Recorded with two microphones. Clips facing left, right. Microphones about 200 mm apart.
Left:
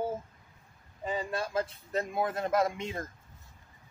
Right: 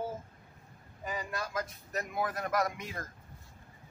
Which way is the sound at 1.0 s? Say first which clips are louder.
Left 5 dB; 30° left (ahead or behind).